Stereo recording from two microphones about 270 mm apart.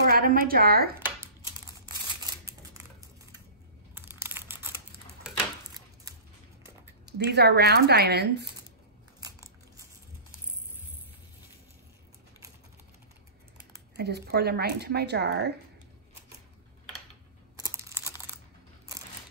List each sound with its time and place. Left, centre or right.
0.0 s speech: right
3.9 s computer keyboard: centre
5.2 s a sound: centre
7.1 s speech: right
9.2 s biting: centre
13.9 s speech: right
17.6 s computer keyboard: centre